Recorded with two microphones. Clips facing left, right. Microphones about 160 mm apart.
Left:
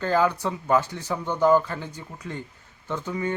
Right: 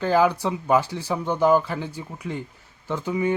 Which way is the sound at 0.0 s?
10° right (ahead or behind).